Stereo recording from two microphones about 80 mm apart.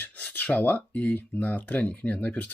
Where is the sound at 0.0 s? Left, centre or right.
Left.